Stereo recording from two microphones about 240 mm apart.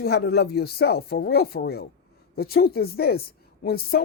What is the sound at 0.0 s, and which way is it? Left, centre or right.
A woman's voice, left.